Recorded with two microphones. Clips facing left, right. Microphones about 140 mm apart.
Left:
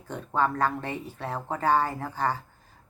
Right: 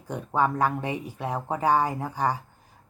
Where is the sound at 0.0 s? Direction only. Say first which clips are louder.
Right 2 dB; 15° right (ahead or behind).